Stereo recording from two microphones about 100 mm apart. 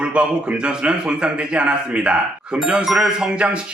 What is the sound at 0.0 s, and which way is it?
Speech, 10° right (ahead or behind).